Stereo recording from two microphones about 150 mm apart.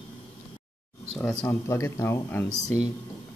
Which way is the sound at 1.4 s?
20° left (ahead or behind).